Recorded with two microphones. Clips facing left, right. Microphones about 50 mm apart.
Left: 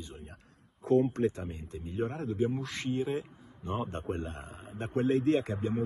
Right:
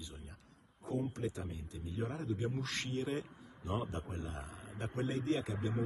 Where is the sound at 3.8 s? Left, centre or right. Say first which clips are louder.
Left 7 dB; left.